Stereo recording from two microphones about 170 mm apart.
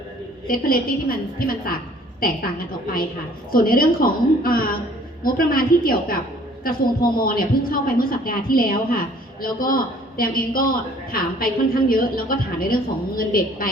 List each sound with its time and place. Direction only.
0.4 s a woman's voice: 60° left (ahead or behind)
3.5 s a woman's voice: 55° left (ahead or behind)